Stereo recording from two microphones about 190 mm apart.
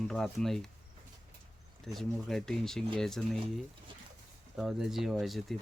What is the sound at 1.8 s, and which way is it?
Speech, centre (ahead or behind).